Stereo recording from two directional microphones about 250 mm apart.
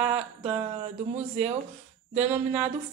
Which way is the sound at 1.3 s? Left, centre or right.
Right.